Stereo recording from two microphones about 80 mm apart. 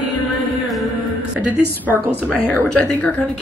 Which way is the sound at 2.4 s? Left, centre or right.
Left.